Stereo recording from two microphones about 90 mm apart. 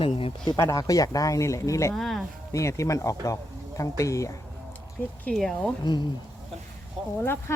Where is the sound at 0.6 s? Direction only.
35° left (ahead or behind).